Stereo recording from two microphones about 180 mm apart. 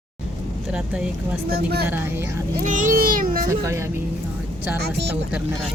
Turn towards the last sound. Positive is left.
turn(degrees=-5)  # may be behind; listen again after turning